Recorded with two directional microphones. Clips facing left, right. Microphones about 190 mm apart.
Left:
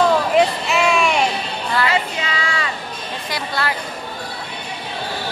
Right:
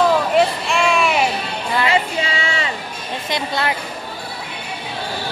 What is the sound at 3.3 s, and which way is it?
Music, 20° right (ahead or behind).